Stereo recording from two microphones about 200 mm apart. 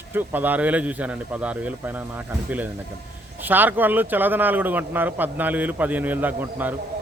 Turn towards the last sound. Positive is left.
turn(degrees=-10)  # may be behind; listen again after turning